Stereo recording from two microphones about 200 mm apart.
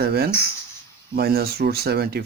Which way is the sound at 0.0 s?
50° right (ahead or behind).